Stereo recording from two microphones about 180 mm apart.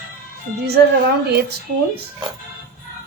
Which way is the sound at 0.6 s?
65° right (ahead or behind).